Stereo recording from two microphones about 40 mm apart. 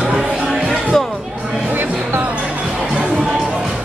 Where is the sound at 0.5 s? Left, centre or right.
Centre.